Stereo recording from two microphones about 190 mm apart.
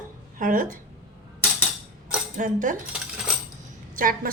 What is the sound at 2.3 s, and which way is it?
Speech, 45° right (ahead or behind).